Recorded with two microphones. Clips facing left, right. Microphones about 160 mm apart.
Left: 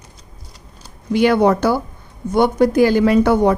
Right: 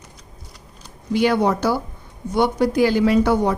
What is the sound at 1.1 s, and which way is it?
A woman's voice, 60° left (ahead or behind).